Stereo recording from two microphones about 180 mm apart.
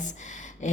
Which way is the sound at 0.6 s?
40° left (ahead or behind).